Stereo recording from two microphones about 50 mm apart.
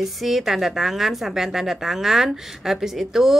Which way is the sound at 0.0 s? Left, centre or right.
Centre.